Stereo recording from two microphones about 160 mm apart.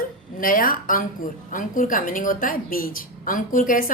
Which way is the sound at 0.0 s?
60° left (ahead or behind).